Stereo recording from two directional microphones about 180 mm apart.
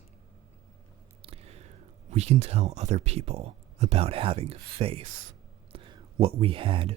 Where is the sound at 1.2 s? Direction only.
35° right (ahead or behind).